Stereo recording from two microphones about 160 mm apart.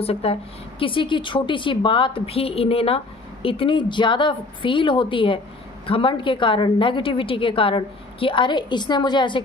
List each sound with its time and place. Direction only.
0.0 s a woman's voice: 40° left (ahead or behind)